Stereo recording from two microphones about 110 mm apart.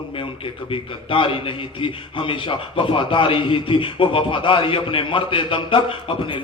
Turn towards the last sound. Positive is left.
turn(degrees=50)  # may be behind; listen again after turning